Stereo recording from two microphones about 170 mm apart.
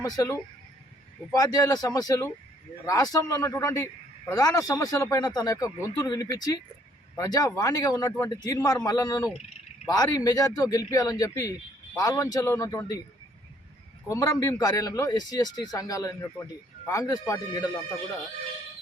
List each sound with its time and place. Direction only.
0.0 s speech: 20° left (ahead or behind)
14.1 s speech: 20° left (ahead or behind)